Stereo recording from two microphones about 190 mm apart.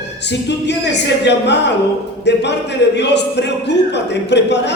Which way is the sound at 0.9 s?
65° left (ahead or behind).